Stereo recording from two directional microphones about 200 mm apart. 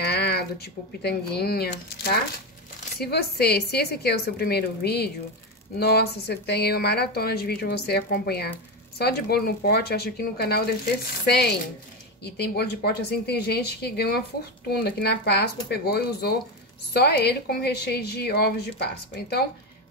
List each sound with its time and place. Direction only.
0.0 s speech: 55° left (ahead or behind)